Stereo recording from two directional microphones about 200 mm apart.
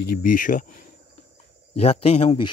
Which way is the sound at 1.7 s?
30° left (ahead or behind).